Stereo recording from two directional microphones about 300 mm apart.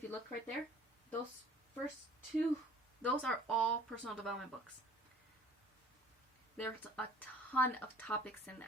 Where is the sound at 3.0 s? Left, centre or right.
Centre.